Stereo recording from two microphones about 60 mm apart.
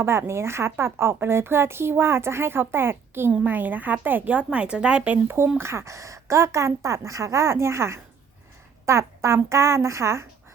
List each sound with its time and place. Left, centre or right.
0.0 s a woman's voice: right; by 5.1 s centre
5.1 s speech: right